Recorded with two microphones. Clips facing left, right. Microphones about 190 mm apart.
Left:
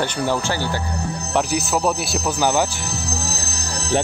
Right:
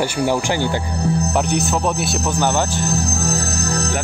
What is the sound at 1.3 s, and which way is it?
Speech, centre (ahead or behind).